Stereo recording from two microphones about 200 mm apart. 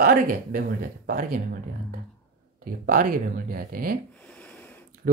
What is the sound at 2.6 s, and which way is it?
Speech, 45° right (ahead or behind).